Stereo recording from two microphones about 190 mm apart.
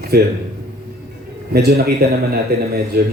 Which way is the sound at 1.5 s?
55° right (ahead or behind).